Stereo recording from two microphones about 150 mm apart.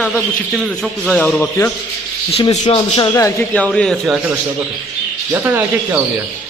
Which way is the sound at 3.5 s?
5° left (ahead or behind).